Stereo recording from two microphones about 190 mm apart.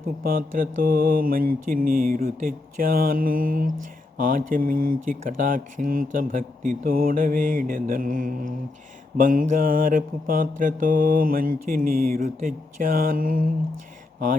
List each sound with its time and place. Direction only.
0.2 s mantra: 50° right (ahead or behind)